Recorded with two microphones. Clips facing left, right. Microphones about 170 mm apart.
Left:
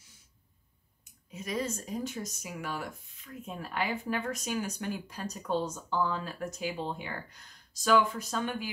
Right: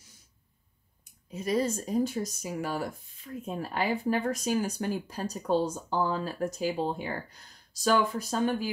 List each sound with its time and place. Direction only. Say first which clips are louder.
1.3 s speech: right 6 dB; 35° right (ahead or behind)